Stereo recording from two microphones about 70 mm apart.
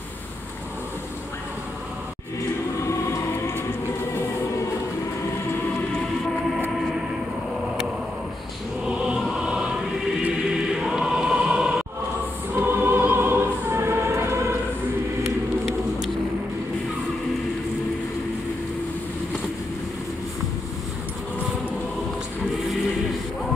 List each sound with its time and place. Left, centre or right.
2.9 s choir: left
8.8 s music: centre
10.8 s choir: centre
12.5 s music: right